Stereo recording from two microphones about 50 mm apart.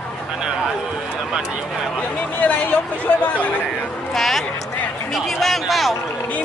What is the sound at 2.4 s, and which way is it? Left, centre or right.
Speech, left.